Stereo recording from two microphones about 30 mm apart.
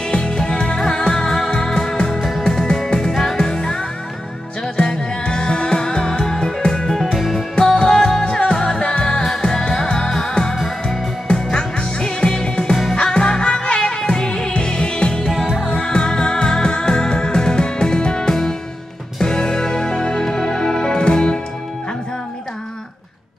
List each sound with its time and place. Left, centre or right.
0.1 s music: left
2.1 s music: centre
2.4 s music: centre
8.3 s music: left